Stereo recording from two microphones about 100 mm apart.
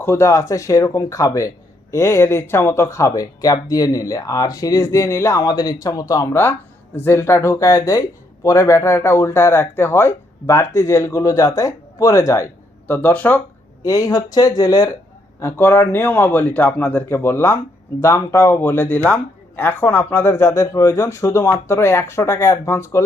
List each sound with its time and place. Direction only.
0.0 s speech: 25° left (ahead or behind)
12.9 s speech: 15° left (ahead or behind)
13.8 s speech: 35° left (ahead or behind)
15.4 s speech: 25° left (ahead or behind)